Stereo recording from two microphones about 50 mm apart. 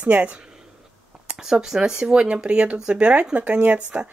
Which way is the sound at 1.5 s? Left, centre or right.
Centre.